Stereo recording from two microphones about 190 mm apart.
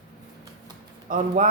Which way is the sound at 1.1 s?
45° right (ahead or behind).